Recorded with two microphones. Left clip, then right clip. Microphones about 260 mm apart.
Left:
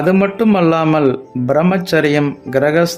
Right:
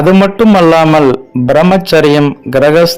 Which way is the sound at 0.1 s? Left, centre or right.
Centre.